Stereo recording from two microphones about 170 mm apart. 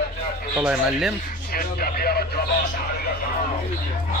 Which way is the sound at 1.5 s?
60° left (ahead or behind).